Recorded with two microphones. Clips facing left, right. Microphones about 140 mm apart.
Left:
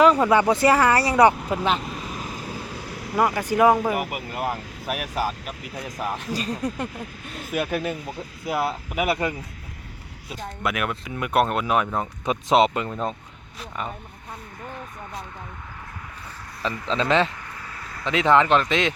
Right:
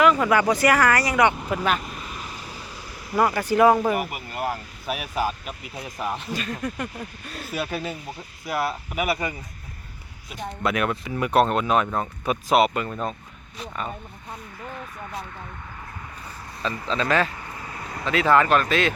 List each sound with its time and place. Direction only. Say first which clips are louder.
0.0 s speech: left 2 dB; 30° left (ahead or behind)
1.5 s speech: left 1 dB; 20° left (ahead or behind)
2.1 s vehicle: left 4 dB; 45° left (ahead or behind)
3.2 s speech: right 1 dB; 15° left (ahead or behind)
4.9 s speech: even; 5° left (ahead or behind)
6.2 s speech: left 2 dB; 35° left (ahead or behind)
7.3 s speech: left 4 dB; 20° left (ahead or behind)
10.6 s speech: right 3 dB; 5° left (ahead or behind)
11.9 s speech: even; 20° left (ahead or behind)
16.9 s speech: left 2 dB; 20° left (ahead or behind)
17.6 s vehicle: right 3 dB; 20° right (ahead or behind)
18.0 s speech: left 1 dB; 20° left (ahead or behind)